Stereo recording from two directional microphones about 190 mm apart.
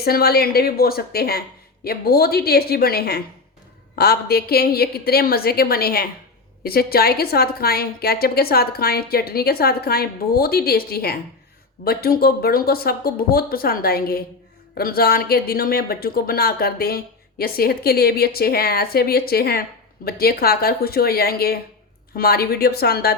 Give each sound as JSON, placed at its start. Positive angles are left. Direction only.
{"t": 0.0, "sound": "speech", "side_deg": 55}